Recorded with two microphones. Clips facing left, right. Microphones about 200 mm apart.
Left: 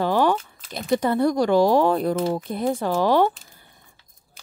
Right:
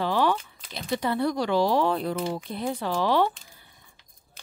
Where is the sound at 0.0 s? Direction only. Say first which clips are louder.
Left 4 dB; 45° left (ahead or behind).